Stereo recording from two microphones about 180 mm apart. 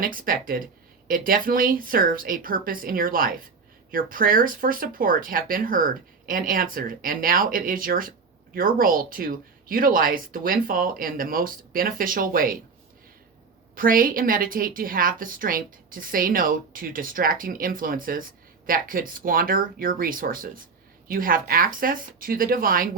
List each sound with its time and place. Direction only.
0.0 s a woman's voice: 50° right (ahead or behind)
13.7 s a woman's voice: 50° right (ahead or behind)